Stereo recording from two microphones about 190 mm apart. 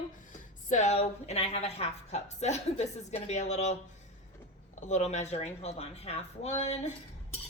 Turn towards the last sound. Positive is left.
turn(degrees=35)  # may be behind; listen again after turning